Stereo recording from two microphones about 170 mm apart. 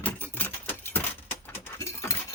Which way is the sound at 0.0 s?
10° left (ahead or behind).